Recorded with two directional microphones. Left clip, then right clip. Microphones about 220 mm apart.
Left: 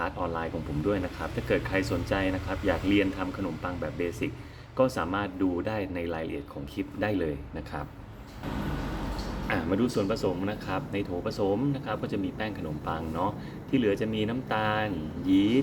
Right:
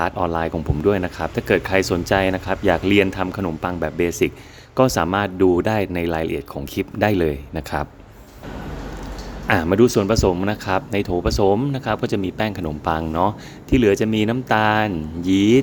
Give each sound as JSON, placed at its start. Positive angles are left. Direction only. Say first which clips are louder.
{"t": 0.0, "sound": "speech", "louder": "right 10 dB", "side_deg": -50}
{"t": 9.5, "sound": "speech", "louder": "right 13 dB", "side_deg": -50}